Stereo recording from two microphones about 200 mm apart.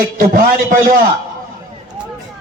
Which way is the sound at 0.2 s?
45° right (ahead or behind).